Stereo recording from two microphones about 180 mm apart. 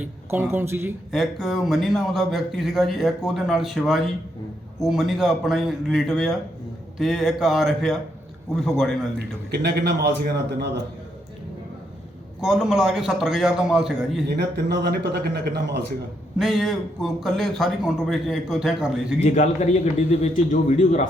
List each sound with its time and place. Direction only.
0.0 s speech: 10° right (ahead or behind)
1.1 s a man's voice: centre (ahead or behind)
9.1 s a man's voice: 65° right (ahead or behind)
12.4 s a man's voice: centre (ahead or behind)
14.3 s a man's voice: 70° right (ahead or behind)
16.4 s a man's voice: centre (ahead or behind)
19.2 s a man's voice: 40° left (ahead or behind)